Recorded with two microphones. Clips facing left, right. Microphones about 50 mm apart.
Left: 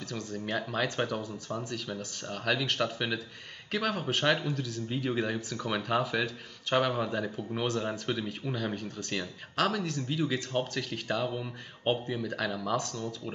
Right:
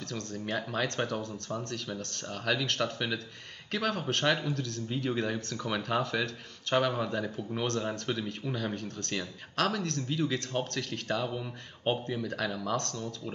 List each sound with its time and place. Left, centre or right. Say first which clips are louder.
0.0 s speech: left 1 dB; centre